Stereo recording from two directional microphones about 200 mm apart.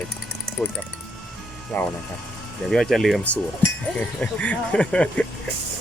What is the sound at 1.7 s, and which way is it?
Speech, 10° left (ahead or behind).